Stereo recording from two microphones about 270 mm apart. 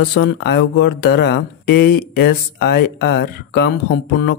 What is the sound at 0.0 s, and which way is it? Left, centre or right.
Speech, left.